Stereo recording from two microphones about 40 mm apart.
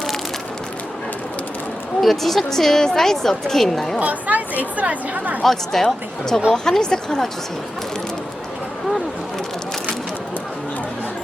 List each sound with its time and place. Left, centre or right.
2.0 s a woman's voice: centre
4.0 s speech: right
5.4 s a woman's voice: centre